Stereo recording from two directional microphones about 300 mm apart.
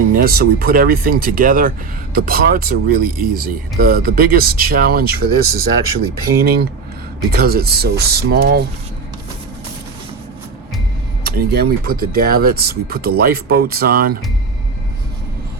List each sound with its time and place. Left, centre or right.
0.1 s speech: right
11.2 s speech: right